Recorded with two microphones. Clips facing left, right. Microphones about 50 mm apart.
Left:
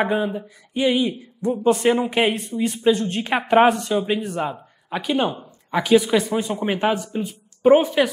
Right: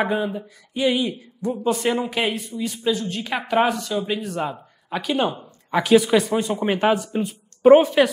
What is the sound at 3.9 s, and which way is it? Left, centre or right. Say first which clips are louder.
Speech: left 3 dB; centre.